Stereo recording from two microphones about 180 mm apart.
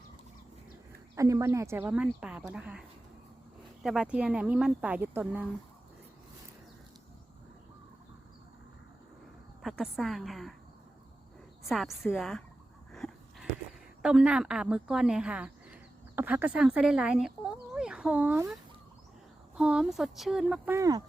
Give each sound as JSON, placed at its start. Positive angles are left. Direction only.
{"t": 1.1, "sound": "speech", "side_deg": -15}
{"t": 3.8, "sound": "speech", "side_deg": -5}
{"t": 9.6, "sound": "speech", "side_deg": 0}
{"t": 11.7, "sound": "speech", "side_deg": 0}
{"t": 12.9, "sound": "dog", "side_deg": 0}
{"t": 14.0, "sound": "speech", "side_deg": -5}
{"t": 19.5, "sound": "speech", "side_deg": -5}
{"t": 20.7, "sound": "speech", "side_deg": -20}